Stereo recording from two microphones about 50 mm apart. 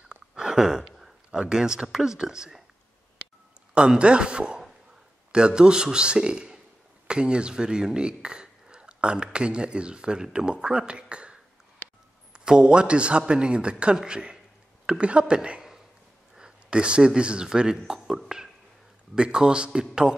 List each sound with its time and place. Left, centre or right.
0.3 s a sound: centre
1.4 s a man's voice: centre
3.7 s a man's voice: right